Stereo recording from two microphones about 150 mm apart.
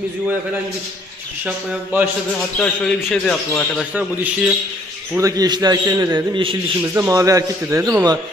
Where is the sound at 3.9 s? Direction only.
10° right (ahead or behind).